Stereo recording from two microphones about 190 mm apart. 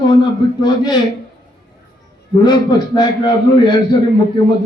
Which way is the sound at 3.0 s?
25° left (ahead or behind).